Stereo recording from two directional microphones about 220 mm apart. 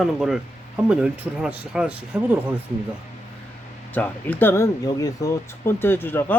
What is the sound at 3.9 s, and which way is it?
Speech, 5° left (ahead or behind).